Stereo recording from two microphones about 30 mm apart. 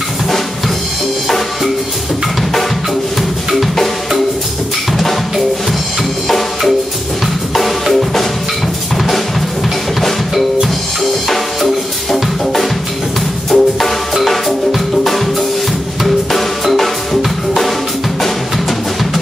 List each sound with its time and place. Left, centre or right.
7.5 s drum kit: centre
10.3 s percussion: centre
11.2 s music: centre
16.3 s drum: centre